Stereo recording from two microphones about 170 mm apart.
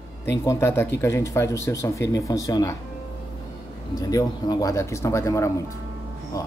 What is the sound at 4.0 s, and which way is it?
A man's voice, 20° left (ahead or behind).